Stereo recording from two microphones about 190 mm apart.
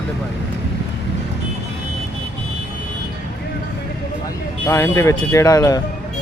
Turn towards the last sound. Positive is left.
turn(degrees=20)  # may be behind; listen again after turning